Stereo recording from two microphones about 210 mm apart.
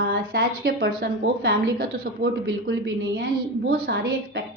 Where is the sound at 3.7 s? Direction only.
45° right (ahead or behind).